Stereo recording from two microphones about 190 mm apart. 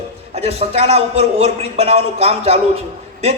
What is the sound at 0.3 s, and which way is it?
A man's voice, 30° right (ahead or behind).